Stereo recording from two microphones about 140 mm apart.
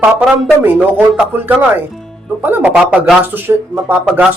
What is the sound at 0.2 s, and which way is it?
A man's voice, 10° right (ahead or behind).